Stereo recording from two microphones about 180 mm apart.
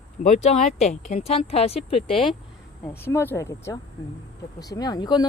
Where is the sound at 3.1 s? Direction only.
15° left (ahead or behind).